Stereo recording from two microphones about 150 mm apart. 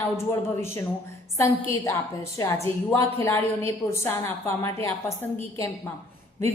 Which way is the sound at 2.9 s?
15° left (ahead or behind).